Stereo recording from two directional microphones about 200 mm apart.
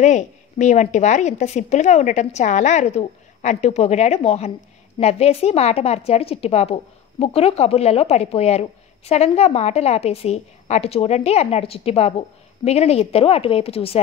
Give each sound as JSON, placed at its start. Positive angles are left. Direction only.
{"t": 0.0, "sound": "speech", "side_deg": 35}